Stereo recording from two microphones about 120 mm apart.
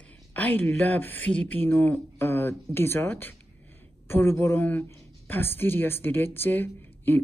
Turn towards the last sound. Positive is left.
turn(degrees=15)  # may be behind; listen again after turning